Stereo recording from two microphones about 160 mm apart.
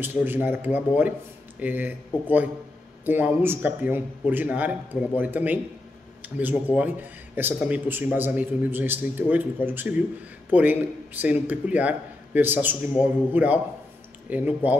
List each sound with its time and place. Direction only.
0.0 s speech: 10° right (ahead or behind)